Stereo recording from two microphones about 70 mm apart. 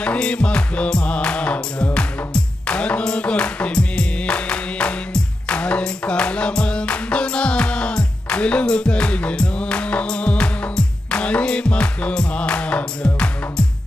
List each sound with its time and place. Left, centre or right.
0.0 s music: centre